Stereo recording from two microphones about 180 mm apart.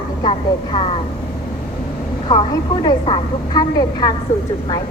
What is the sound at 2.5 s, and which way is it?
A woman's voice, 25° left (ahead or behind).